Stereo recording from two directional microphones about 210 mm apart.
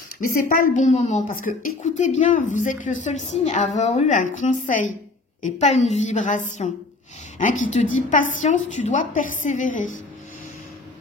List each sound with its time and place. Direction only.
0.2 s speech: 40° left (ahead or behind)